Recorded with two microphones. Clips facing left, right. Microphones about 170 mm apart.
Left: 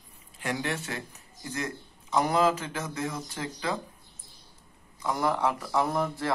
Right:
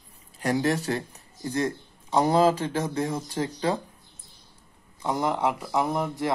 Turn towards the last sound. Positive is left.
turn(degrees=-15)  # may be behind; listen again after turning